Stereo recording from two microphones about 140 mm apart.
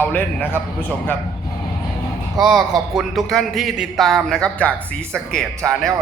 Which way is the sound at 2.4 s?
5° right (ahead or behind).